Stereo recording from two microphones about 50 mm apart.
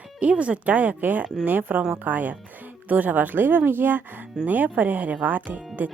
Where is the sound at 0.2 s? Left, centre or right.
Right.